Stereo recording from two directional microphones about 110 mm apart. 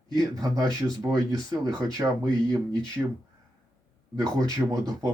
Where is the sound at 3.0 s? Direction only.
20° right (ahead or behind).